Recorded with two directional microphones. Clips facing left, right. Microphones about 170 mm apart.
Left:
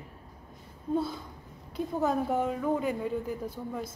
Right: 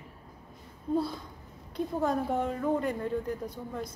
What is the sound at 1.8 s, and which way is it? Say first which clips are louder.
Speech: left 1 dB; 5° left (ahead or behind).